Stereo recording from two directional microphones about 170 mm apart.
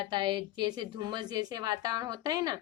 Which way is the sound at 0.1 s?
25° right (ahead or behind).